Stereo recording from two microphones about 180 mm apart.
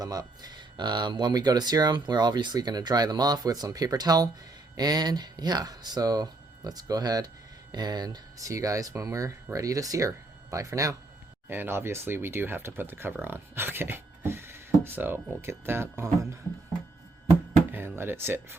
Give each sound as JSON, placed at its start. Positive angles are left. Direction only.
{"t": 0.0, "sound": "speech", "side_deg": -20}
{"t": 17.7, "sound": "music", "side_deg": -15}